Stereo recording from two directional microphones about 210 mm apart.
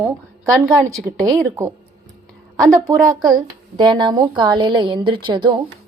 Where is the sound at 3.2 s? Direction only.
20° right (ahead or behind).